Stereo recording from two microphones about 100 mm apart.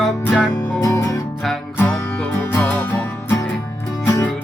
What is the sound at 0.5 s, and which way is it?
Music, 35° left (ahead or behind).